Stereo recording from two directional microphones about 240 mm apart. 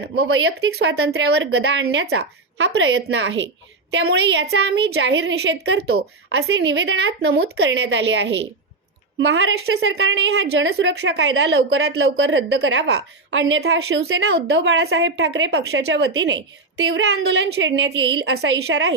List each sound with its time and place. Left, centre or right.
0.1 s speech: right